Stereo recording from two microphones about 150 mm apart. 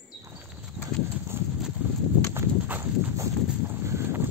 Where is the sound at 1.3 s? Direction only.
15° right (ahead or behind).